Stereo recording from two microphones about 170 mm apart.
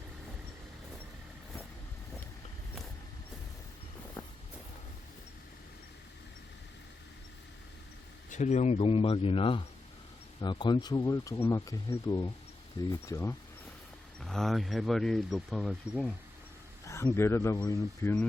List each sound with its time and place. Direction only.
8.3 s a man's voice: 45° left (ahead or behind); by 13.3 s 15° left (ahead or behind)
14.2 s speech: 5° left (ahead or behind)
16.8 s speech: 15° left (ahead or behind)